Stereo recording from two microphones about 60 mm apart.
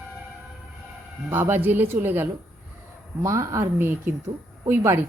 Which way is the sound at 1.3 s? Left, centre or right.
Right.